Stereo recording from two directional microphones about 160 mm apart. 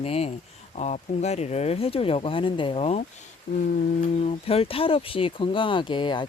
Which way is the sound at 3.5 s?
60° left (ahead or behind).